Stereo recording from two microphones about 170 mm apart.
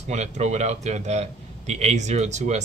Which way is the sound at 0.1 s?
45° right (ahead or behind).